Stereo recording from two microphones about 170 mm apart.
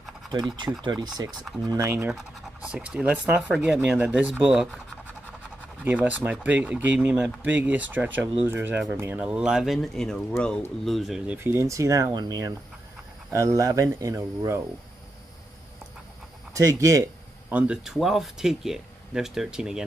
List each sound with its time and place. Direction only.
0.5 s speech: 25° right (ahead or behind)
2.0 s speech: 5° right (ahead or behind)
6.0 s speech: 10° right (ahead or behind)
16.5 s speech: 20° right (ahead or behind)
17.5 s speech: 10° right (ahead or behind)